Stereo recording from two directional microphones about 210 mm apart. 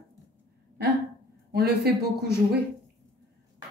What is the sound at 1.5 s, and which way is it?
Speech, 50° right (ahead or behind).